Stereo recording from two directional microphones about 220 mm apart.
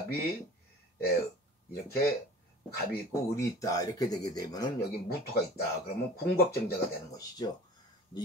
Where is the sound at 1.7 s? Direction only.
45° left (ahead or behind).